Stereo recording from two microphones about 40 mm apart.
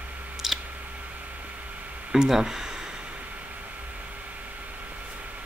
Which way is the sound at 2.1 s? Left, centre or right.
Centre.